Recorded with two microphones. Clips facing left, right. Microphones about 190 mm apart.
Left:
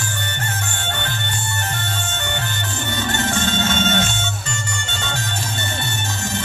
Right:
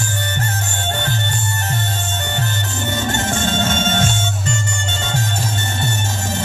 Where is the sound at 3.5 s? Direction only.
45° right (ahead or behind).